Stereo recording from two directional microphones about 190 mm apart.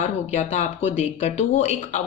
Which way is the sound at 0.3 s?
40° left (ahead or behind).